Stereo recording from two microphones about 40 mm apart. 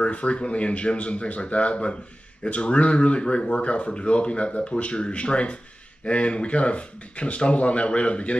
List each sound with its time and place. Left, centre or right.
0.0 s speech: left